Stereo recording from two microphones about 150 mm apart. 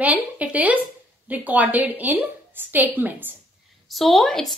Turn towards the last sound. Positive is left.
turn(degrees=5)  # may be behind; listen again after turning